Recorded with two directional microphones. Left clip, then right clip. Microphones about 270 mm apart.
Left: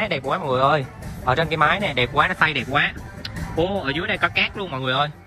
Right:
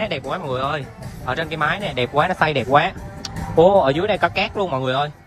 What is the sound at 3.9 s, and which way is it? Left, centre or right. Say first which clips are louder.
Speech: right 3 dB; centre.